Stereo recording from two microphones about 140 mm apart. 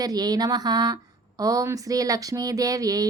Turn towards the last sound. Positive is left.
turn(degrees=-25)  # may be behind; listen again after turning